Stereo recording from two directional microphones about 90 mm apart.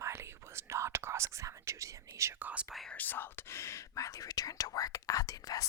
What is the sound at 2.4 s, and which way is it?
Speech, 15° right (ahead or behind).